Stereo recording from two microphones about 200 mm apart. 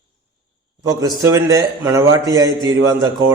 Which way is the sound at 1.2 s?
15° right (ahead or behind).